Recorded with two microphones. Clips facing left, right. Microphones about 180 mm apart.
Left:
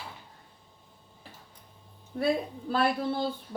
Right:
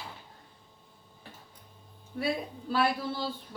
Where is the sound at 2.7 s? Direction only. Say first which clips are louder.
Left 2 dB; 50° left (ahead or behind).